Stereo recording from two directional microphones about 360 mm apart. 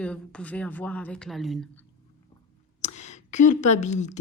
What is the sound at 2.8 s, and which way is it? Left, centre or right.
Speech, centre.